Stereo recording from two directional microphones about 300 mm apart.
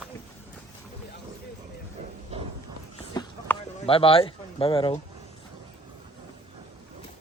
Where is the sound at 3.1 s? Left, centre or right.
Centre.